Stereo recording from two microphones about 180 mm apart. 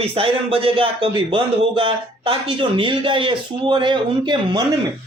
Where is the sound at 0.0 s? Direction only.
30° right (ahead or behind).